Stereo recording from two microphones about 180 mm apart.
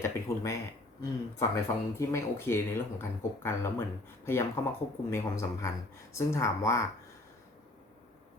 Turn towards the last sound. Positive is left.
turn(degrees=15)  # may be behind; listen again after turning